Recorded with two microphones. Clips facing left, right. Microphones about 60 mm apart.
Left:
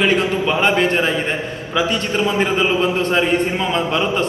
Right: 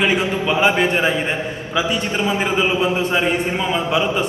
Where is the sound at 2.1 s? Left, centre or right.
Centre.